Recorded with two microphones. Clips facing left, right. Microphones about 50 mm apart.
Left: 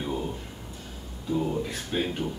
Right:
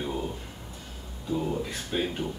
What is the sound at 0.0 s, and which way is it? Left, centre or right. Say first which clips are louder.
Music: left 1 dB; centre.